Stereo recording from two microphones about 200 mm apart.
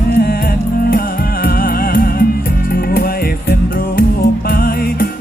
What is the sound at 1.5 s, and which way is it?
Music, 45° left (ahead or behind).